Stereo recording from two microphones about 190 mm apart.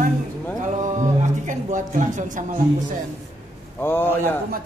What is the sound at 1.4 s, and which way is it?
Speech, 40° right (ahead or behind).